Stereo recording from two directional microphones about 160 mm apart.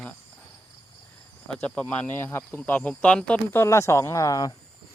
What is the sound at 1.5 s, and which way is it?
Speech, 5° left (ahead or behind).